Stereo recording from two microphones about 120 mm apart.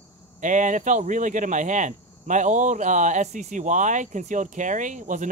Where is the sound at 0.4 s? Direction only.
90° right.